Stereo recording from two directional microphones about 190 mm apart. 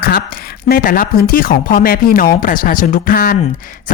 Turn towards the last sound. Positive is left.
turn(degrees=45)  # may be behind; listen again after turning